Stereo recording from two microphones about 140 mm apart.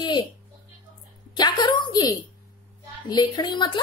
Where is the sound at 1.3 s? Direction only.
30° left (ahead or behind).